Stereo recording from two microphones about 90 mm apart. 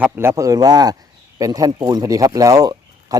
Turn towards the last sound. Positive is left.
turn(degrees=-45)  # may be behind; listen again after turning